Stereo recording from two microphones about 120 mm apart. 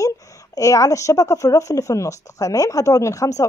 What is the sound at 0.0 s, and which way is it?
Speech, 25° left (ahead or behind).